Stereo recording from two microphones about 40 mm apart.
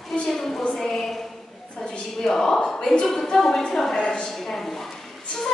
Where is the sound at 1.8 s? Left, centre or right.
Centre.